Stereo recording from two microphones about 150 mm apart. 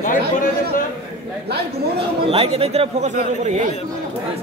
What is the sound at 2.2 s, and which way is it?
Speech, 40° right (ahead or behind).